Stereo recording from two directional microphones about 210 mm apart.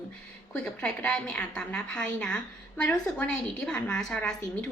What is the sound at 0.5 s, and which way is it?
A woman's voice, 5° left (ahead or behind).